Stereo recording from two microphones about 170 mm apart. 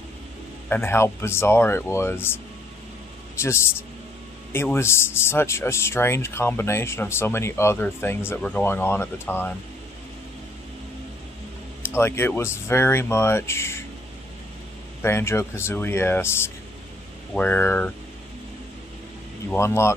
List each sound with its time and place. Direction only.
0.7 s speech: 15° left (ahead or behind)
11.9 s speech: 15° left (ahead or behind)
15.0 s speech: 15° left (ahead or behind)
19.5 s speech: 15° left (ahead or behind)